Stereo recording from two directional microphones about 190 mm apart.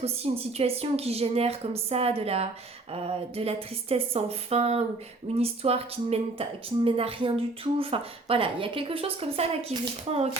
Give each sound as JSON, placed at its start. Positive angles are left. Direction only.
{"t": 0.0, "sound": "a woman's voice", "side_deg": -30}